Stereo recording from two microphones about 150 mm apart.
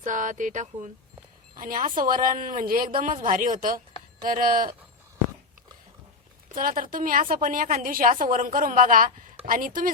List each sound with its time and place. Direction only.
0.0 s a woman's voice: 60° right (ahead or behind)
6.5 s a woman's voice: 70° right (ahead or behind)